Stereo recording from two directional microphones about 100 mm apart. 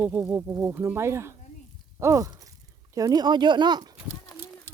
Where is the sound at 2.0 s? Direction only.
35° right (ahead or behind).